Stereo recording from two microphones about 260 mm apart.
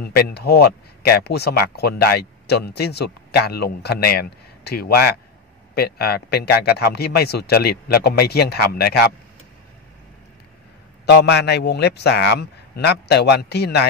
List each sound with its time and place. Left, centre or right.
0.0 s speech: left
11.1 s speech: left